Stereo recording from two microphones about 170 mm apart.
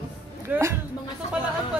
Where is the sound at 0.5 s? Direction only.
10° right (ahead or behind).